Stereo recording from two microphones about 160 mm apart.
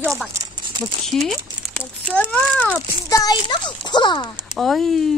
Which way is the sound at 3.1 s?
25° left (ahead or behind).